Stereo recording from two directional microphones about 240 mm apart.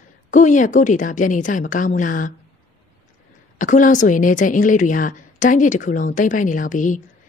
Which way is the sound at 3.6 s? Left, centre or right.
Left.